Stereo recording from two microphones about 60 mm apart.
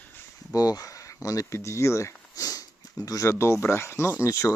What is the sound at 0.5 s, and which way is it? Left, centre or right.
Speech, left.